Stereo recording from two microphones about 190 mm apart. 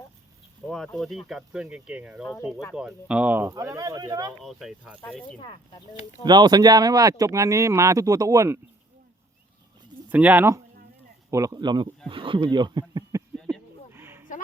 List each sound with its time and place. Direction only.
0.9 s speech: centre (ahead or behind); by 4.4 s 20° right (ahead or behind)
4.4 s speech: 5° right (ahead or behind)
5.4 s speech: 25° left (ahead or behind)
6.2 s speech: 20° right (ahead or behind)
10.1 s speech: 10° right (ahead or behind)
13.9 s a sound: 10° right (ahead or behind)